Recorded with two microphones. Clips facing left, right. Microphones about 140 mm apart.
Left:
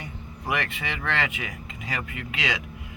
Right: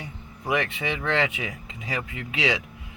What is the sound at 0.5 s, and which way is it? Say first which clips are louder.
Speech: right 4 dB; 15° right (ahead or behind).